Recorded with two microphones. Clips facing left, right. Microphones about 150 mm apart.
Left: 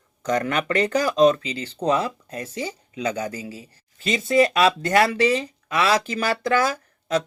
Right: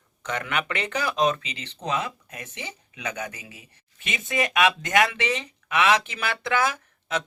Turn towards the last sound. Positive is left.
turn(degrees=40)  # may be behind; listen again after turning